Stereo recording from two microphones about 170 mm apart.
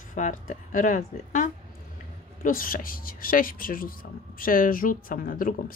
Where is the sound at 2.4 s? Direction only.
55° left (ahead or behind).